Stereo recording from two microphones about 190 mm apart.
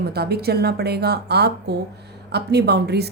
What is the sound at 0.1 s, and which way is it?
Speech, 55° right (ahead or behind).